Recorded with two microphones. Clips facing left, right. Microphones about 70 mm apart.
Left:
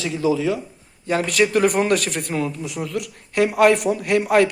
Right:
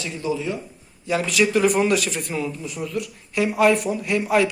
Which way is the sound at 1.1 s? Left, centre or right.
Left.